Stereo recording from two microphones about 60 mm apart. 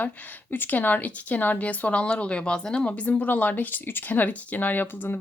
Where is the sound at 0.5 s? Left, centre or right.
Left.